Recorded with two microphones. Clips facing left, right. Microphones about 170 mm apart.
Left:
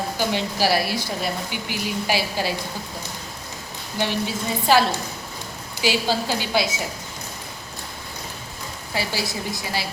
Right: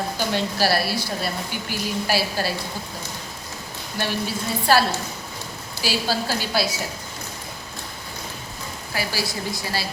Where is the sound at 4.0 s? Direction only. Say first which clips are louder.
Left 2 dB; 15° left (ahead or behind).